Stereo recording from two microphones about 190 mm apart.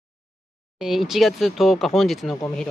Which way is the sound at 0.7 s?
Centre (ahead or behind).